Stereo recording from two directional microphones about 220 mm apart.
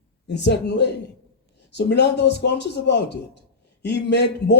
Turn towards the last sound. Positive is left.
turn(degrees=50)  # may be behind; listen again after turning